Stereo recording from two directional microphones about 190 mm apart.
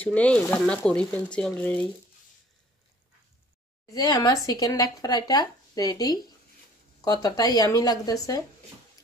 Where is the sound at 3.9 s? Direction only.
20° left (ahead or behind).